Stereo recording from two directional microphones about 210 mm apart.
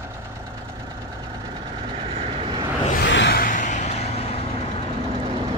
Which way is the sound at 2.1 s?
25° right (ahead or behind).